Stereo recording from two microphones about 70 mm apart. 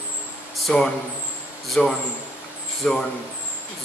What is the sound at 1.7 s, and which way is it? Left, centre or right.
Speech, centre.